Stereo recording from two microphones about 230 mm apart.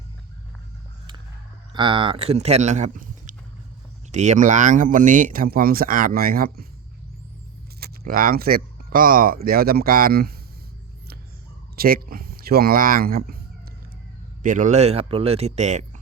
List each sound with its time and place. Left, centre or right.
1.7 s speech: right
7.8 s speech: right
11.8 s speech: right
14.4 s speech: right